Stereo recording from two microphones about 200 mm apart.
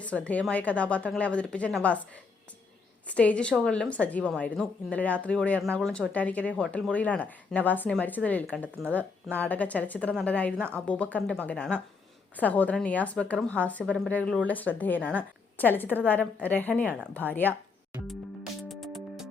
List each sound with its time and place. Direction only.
0.0 s a woman's voice: 5° left (ahead or behind)
3.1 s a woman's voice: 5° left (ahead or behind)
18.7 s music: centre (ahead or behind)